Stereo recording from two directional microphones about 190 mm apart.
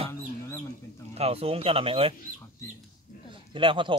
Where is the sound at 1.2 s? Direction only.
30° right (ahead or behind).